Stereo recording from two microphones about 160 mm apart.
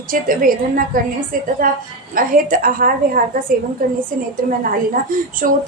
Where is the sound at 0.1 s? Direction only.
60° right (ahead or behind).